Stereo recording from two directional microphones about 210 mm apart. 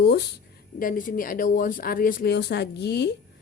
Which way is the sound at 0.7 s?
40° left (ahead or behind).